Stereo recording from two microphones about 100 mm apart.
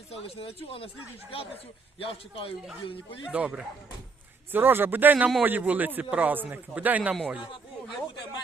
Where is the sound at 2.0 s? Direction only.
65° left (ahead or behind).